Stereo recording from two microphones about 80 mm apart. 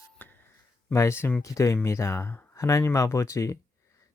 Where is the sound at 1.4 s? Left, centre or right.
Left.